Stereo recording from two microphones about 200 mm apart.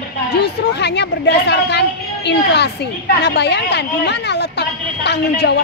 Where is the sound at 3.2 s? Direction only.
55° left (ahead or behind).